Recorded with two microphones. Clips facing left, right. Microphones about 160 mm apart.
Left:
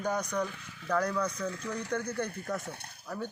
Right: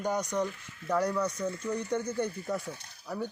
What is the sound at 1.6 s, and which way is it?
Speech, 90° left.